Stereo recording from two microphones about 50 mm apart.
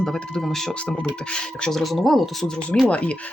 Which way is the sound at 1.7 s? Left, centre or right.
Centre.